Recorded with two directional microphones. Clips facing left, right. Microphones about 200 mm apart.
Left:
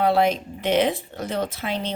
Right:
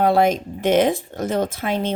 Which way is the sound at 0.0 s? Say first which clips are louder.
Right 3 dB; 45° right (ahead or behind).